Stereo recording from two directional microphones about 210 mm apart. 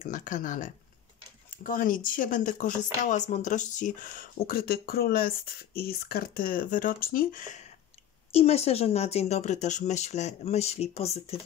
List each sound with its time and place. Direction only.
0.0 s speech: 40° left (ahead or behind)